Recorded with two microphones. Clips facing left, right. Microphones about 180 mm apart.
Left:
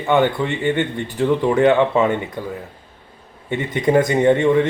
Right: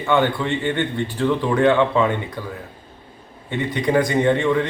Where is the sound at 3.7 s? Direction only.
20° left (ahead or behind).